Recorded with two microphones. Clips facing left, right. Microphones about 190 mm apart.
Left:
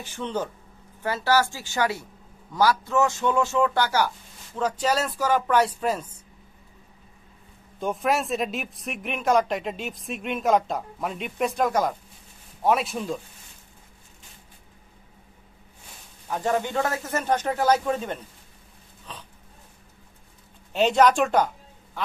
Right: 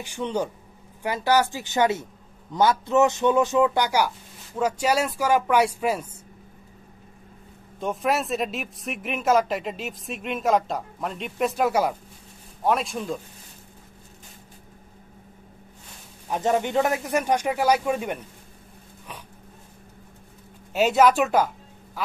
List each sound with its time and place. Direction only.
0.0 s speech: 15° right (ahead or behind)
7.8 s a man's voice: centre (ahead or behind)
12.6 s a man's voice: centre (ahead or behind)
16.3 s speech: 20° right (ahead or behind)
20.7 s speech: 5° right (ahead or behind)